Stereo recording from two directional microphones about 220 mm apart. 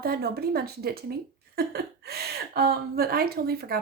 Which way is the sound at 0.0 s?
45° right (ahead or behind).